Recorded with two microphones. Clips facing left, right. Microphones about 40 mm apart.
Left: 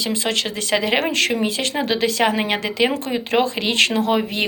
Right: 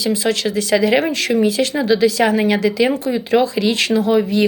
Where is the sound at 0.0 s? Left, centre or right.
Left.